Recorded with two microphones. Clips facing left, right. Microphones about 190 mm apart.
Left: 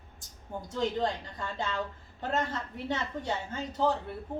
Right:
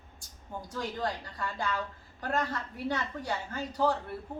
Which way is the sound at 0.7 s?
25° left (ahead or behind).